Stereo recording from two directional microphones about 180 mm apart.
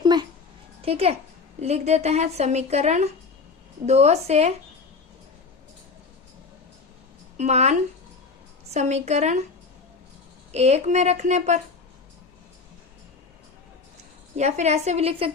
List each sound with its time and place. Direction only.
0.0 s a sound: 25° right (ahead or behind)
0.8 s a child's voice: 35° right (ahead or behind)
7.3 s a woman's voice: 40° right (ahead or behind)
10.5 s a woman's voice: 35° right (ahead or behind)
14.3 s a woman's voice: 40° right (ahead or behind)